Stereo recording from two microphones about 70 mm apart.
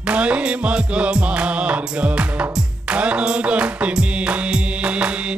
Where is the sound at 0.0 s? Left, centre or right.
Centre.